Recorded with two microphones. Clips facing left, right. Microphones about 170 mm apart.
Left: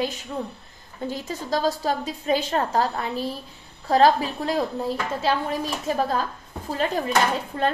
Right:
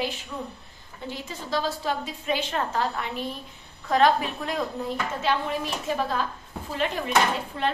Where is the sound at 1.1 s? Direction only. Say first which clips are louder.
Left 2 dB; 40° left (ahead or behind).